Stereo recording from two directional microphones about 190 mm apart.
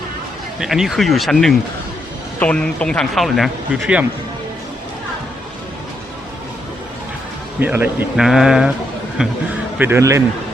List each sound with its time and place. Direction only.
0.6 s speech: centre (ahead or behind)
7.6 s speech: 10° right (ahead or behind)
9.7 s a man's voice: 10° right (ahead or behind)